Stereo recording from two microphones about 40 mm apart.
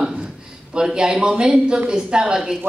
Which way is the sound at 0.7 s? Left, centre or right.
Centre.